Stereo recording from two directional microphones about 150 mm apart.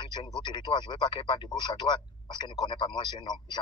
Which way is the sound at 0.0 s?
30° left (ahead or behind).